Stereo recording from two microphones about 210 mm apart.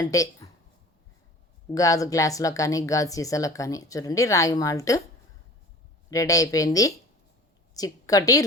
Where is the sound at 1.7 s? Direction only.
15° left (ahead or behind).